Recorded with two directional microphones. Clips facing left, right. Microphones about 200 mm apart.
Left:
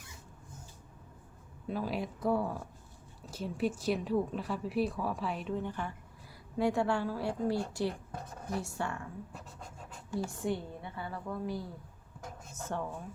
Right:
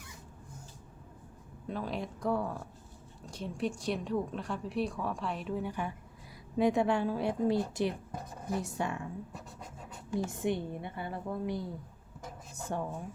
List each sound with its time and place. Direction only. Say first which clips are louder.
1.6 s a woman's voice: left 1 dB; 5° left (ahead or behind); by 9.0 s 15° right (ahead or behind)
10.1 s speech: right 2 dB; 20° right (ahead or behind)